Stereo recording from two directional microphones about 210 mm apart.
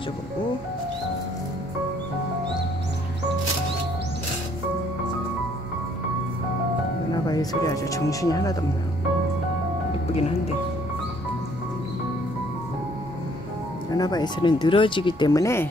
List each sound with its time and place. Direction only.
7.2 s speech: 15° left (ahead or behind)
13.9 s speech: 20° left (ahead or behind)